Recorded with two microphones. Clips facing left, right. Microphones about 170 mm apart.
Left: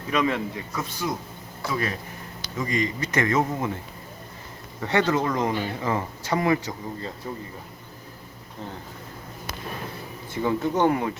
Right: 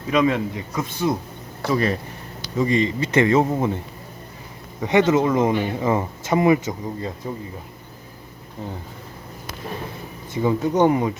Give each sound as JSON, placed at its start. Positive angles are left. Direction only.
{"t": 0.1, "sound": "speech", "side_deg": -15}
{"t": 4.8, "sound": "speech", "side_deg": -20}
{"t": 10.3, "sound": "speech", "side_deg": -15}